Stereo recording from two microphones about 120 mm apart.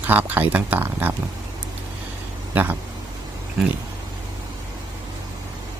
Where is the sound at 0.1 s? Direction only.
15° right (ahead or behind).